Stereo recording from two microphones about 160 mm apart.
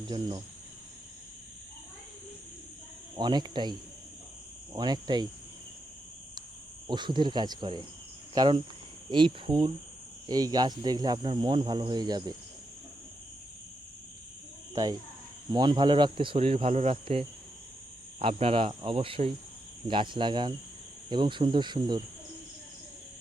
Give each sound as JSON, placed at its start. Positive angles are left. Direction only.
{"t": 0.1, "sound": "speech", "side_deg": -30}
{"t": 3.2, "sound": "speech", "side_deg": -25}
{"t": 6.8, "sound": "speech", "side_deg": -30}
{"t": 15.5, "sound": "speech", "side_deg": -25}